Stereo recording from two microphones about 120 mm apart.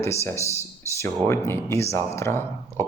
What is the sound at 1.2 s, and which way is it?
Speech, 20° left (ahead or behind).